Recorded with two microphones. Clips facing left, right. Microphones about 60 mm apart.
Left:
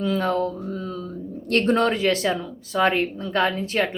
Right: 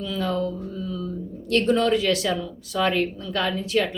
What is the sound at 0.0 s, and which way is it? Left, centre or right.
Mantra, left.